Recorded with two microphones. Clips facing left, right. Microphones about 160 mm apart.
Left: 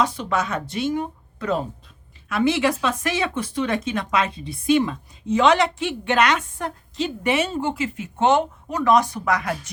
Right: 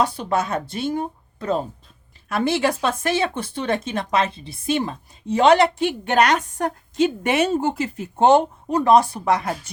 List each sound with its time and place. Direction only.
0.3 s speech: 35° right (ahead or behind)